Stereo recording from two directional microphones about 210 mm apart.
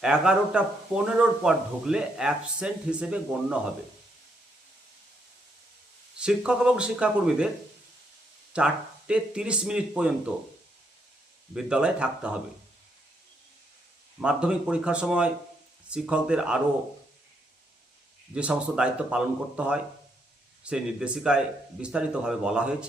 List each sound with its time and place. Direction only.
0.0 s speech: 5° right (ahead or behind)
6.1 s speech: 5° right (ahead or behind)
8.5 s speech: 5° right (ahead or behind)
11.5 s speech: 5° right (ahead or behind)
14.2 s speech: 5° right (ahead or behind)
18.3 s speech: 5° right (ahead or behind)